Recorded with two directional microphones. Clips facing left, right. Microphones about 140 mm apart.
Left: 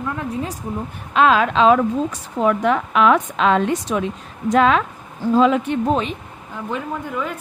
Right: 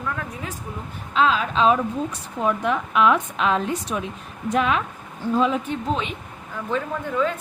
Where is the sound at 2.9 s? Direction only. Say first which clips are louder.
Left 1 dB; 75° left (ahead or behind).